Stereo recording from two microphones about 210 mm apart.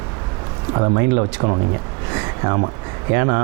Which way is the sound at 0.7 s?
25° right (ahead or behind).